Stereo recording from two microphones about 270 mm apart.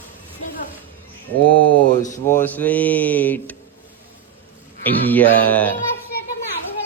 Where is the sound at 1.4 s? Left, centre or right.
Right.